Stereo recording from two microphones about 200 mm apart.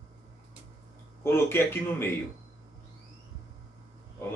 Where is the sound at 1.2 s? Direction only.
10° left (ahead or behind).